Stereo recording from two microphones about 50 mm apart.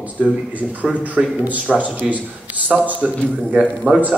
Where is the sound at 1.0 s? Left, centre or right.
Right.